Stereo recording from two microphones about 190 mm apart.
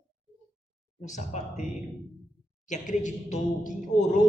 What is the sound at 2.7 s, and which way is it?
A man's voice, 40° left (ahead or behind).